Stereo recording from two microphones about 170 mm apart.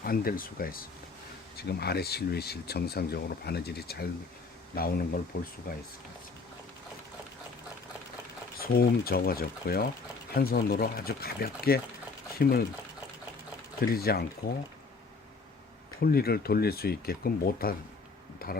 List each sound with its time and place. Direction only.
0.0 s speech: 60° left (ahead or behind)
1.5 s speech: 70° left (ahead or behind)
8.5 s speech: 60° left (ahead or behind)
13.8 s speech: 65° left (ahead or behind)
16.0 s speech: 65° left (ahead or behind)